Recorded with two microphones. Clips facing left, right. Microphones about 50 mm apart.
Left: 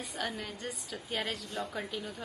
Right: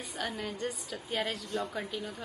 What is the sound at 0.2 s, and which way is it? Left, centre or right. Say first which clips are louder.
A woman's voice: right 3 dB; centre.